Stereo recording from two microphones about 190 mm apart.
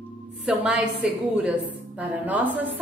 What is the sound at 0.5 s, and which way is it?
A man's voice, 5° right (ahead or behind).